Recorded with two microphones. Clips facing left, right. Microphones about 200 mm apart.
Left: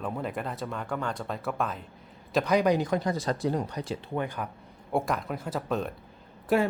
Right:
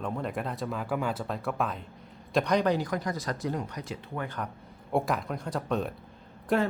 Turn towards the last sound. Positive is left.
turn(degrees=5)  # may be behind; listen again after turning